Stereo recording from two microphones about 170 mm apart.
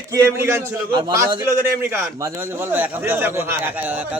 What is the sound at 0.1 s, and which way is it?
Speech, 15° right (ahead or behind).